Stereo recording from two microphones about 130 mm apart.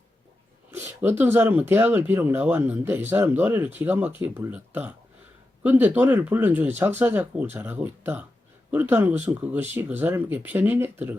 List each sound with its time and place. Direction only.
0.7 s speech: 15° right (ahead or behind)